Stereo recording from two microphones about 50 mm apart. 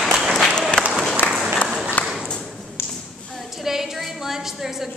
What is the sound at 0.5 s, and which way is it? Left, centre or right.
Applause, centre.